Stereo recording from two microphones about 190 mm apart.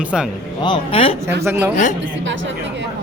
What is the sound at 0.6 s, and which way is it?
Speech, 25° left (ahead or behind).